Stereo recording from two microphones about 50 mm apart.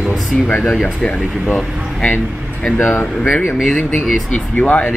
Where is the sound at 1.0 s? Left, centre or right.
Left.